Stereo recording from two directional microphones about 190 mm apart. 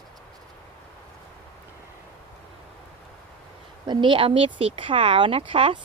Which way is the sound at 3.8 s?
25° right (ahead or behind).